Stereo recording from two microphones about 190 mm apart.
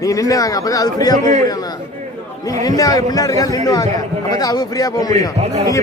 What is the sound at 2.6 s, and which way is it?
A man's voice, 20° left (ahead or behind).